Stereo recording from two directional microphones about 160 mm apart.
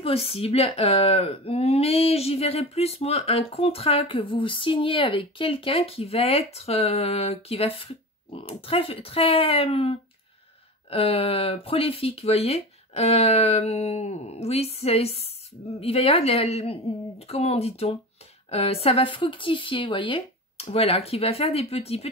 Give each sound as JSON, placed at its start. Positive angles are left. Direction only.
{"t": 0.0, "sound": "speech", "side_deg": 35}